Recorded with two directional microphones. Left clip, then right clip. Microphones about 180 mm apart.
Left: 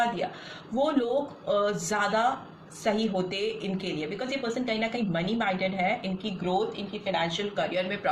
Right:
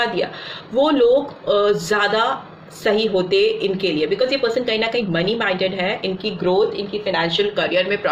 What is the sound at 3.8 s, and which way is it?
A woman's voice, 40° right (ahead or behind).